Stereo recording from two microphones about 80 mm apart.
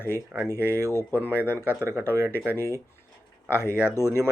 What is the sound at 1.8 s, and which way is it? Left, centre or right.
Speech, right.